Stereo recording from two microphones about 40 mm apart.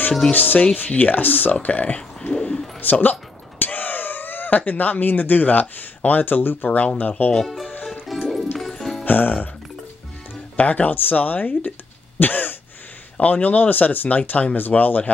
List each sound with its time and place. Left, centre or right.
0.3 s speech: left
2.3 s a sound: left
2.8 s speech: left
7.0 s speech: left
8.1 s music: centre
9.0 s speech: left
10.5 s speech: left
13.2 s speech: left